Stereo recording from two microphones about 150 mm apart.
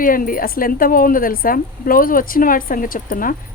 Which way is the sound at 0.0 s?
70° left (ahead or behind).